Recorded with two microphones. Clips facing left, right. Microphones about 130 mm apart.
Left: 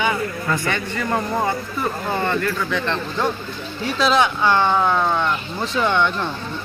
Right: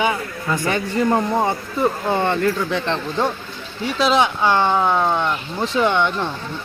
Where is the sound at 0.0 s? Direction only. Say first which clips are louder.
Even; 10° right (ahead or behind).